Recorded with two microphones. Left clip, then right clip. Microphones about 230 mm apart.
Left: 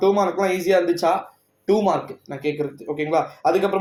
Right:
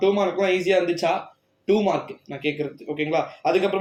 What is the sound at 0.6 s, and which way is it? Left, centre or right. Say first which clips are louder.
Speech: left 2 dB; left.